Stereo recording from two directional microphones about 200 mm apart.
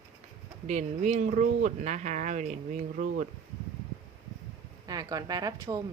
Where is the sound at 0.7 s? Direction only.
35° right (ahead or behind).